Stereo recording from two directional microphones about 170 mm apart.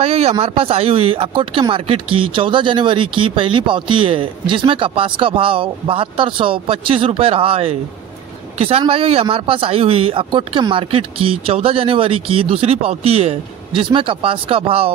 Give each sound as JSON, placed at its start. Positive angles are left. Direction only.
{"t": 0.0, "sound": "speech", "side_deg": -35}